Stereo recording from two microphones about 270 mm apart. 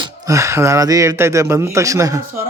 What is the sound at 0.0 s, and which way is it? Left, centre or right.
A woman's voice, centre.